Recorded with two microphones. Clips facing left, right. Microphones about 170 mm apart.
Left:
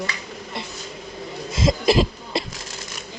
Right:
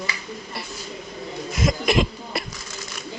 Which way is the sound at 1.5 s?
25° left (ahead or behind).